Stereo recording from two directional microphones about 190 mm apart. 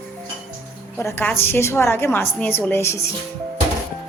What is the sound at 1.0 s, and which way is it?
A woman's voice, 10° left (ahead or behind).